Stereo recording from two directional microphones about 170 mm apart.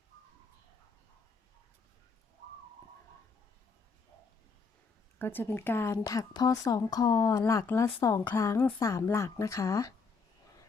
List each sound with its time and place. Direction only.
5.2 s a woman's voice: 10° left (ahead or behind)